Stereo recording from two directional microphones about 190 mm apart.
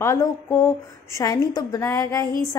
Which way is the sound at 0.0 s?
15° left (ahead or behind).